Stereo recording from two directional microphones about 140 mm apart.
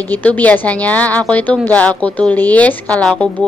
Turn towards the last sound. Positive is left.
turn(degrees=5)  # may be behind; listen again after turning